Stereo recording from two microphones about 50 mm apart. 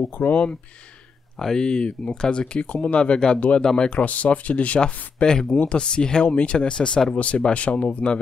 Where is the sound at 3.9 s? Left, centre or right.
Left.